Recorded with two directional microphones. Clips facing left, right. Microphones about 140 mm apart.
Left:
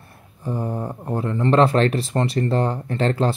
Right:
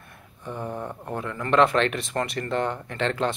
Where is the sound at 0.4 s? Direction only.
35° left (ahead or behind).